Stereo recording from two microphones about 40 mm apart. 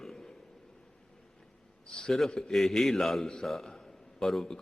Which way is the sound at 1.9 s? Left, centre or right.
Centre.